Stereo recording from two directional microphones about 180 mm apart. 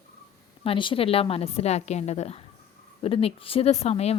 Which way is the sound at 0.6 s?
30° left (ahead or behind).